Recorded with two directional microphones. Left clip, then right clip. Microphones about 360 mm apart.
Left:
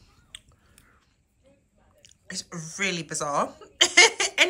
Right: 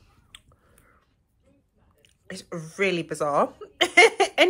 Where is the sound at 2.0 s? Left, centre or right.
Centre.